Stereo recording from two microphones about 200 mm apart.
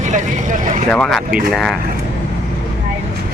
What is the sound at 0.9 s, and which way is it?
Speech, centre (ahead or behind).